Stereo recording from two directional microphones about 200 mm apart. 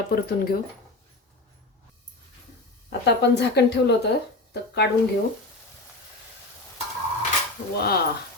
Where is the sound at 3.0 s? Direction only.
55° left (ahead or behind).